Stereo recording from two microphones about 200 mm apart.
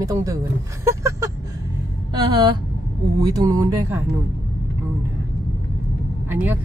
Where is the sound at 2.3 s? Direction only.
20° right (ahead or behind).